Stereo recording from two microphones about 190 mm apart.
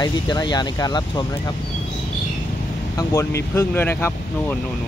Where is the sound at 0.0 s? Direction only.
20° left (ahead or behind).